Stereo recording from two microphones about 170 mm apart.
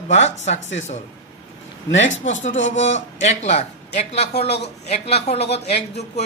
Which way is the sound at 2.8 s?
45° left (ahead or behind).